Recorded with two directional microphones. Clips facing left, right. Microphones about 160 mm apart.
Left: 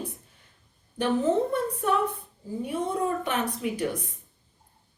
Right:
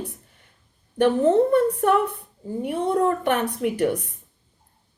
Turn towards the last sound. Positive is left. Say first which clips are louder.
# right 6 dB
turn(degrees=-60)  # may be behind; listen again after turning